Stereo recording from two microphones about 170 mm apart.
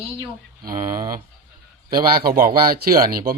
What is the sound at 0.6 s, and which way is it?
Speech, 55° right (ahead or behind).